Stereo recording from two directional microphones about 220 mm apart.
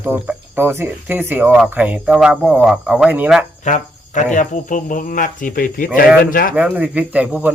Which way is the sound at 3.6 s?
35° left (ahead or behind).